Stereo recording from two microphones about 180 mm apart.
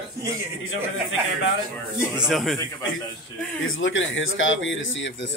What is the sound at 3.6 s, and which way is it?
Speech, 90° left.